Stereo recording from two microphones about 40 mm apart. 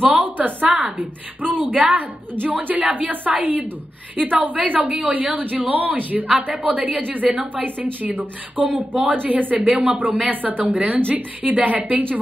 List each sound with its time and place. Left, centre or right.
0.0 s a woman's voice: right